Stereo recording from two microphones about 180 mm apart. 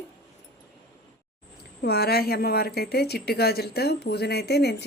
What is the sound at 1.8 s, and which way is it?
Speech, 60° left (ahead or behind).